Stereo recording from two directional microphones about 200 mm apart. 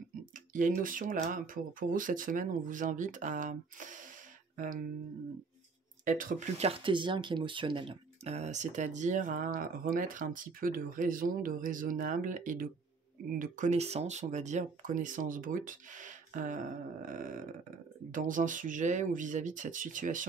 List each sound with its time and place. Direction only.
0.5 s speech: 40° right (ahead or behind)
6.0 s speech: 40° right (ahead or behind)